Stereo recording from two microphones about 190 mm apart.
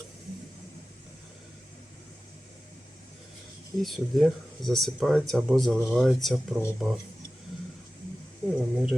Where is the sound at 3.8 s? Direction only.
Centre (ahead or behind).